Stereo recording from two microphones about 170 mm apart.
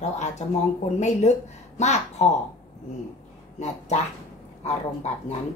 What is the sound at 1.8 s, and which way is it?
Speech, 40° left (ahead or behind).